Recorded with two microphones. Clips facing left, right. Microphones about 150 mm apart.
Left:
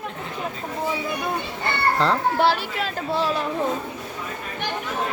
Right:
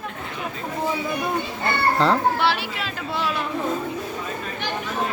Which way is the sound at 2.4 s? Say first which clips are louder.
Left 2 dB; 45° left (ahead or behind).